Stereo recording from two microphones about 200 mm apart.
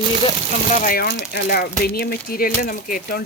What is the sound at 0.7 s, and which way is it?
Speech, 40° left (ahead or behind).